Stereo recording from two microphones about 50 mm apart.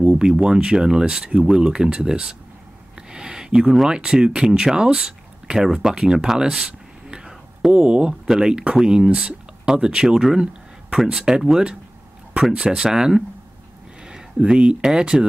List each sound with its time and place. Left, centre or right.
0.0 s speech: centre
3.0 s a sound: centre
3.9 s speech: centre